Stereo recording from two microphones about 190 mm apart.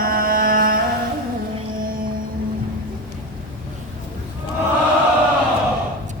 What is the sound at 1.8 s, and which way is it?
Music, 50° right (ahead or behind).